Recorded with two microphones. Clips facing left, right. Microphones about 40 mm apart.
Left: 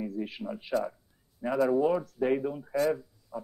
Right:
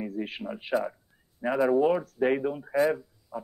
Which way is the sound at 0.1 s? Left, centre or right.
Right.